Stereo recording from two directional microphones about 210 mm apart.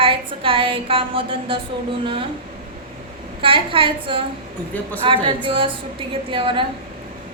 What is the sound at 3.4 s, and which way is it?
A woman's voice, 25° right (ahead or behind).